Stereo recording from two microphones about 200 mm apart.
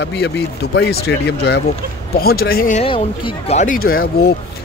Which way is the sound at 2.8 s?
25° left (ahead or behind).